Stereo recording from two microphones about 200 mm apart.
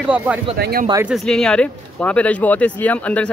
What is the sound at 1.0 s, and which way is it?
Speech, centre (ahead or behind).